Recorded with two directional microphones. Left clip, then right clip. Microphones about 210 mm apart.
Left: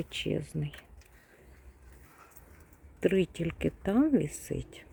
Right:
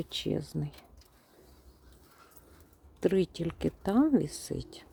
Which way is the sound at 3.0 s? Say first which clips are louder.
Even; centre (ahead or behind).